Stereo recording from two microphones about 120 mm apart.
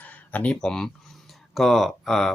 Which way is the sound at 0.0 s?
15° left (ahead or behind).